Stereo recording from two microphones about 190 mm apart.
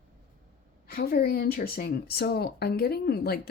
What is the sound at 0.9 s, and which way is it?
Speech, 50° left (ahead or behind).